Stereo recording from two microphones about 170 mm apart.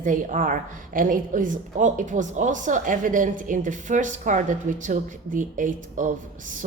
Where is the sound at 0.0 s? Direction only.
50° right (ahead or behind).